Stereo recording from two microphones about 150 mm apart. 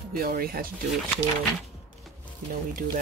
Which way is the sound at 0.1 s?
75° right (ahead or behind).